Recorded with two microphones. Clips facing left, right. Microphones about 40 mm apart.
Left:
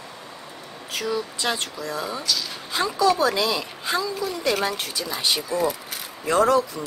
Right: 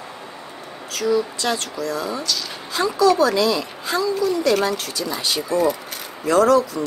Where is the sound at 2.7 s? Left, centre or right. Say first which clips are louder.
Right 4 dB; left.